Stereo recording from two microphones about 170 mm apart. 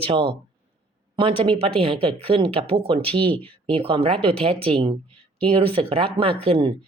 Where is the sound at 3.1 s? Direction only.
10° left (ahead or behind).